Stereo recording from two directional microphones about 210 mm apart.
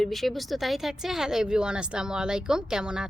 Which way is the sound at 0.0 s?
Centre (ahead or behind).